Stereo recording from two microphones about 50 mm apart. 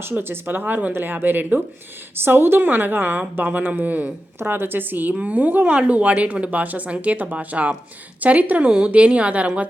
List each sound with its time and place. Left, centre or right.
0.0 s speech: right
4.4 s a woman's voice: right